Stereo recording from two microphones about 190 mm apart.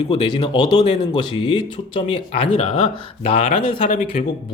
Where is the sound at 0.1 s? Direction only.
25° left (ahead or behind).